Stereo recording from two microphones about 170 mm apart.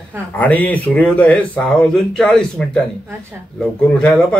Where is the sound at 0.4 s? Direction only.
10° left (ahead or behind).